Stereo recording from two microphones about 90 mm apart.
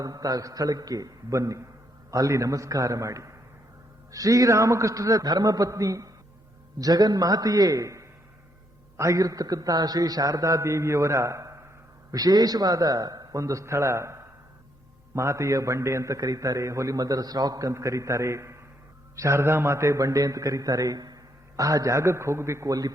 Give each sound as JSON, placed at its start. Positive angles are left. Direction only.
{"t": 0.0, "sound": "a man's voice", "side_deg": -45}
{"t": 12.1, "sound": "a man's voice", "side_deg": -45}